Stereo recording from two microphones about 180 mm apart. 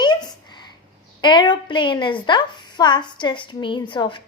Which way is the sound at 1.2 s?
25° left (ahead or behind).